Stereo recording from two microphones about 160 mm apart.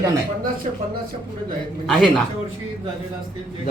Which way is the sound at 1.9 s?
Centre (ahead or behind).